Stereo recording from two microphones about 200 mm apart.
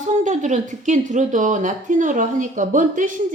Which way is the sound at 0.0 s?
35° right (ahead or behind).